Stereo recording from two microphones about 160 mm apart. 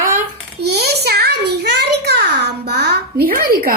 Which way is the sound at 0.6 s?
90° right.